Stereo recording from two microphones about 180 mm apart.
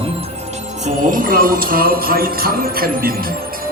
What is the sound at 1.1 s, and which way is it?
Speech, 50° right (ahead or behind).